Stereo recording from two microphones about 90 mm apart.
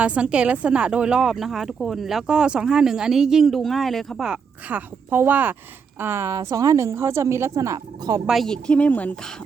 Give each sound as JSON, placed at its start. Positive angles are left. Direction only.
{"t": 0.0, "sound": "speech", "side_deg": -15}
{"t": 4.3, "sound": "a woman's voice", "side_deg": -20}
{"t": 8.3, "sound": "speech", "side_deg": 0}
{"t": 8.6, "sound": "speech", "side_deg": 15}